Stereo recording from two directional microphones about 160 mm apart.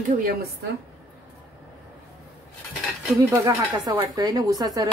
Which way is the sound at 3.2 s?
20° right (ahead or behind).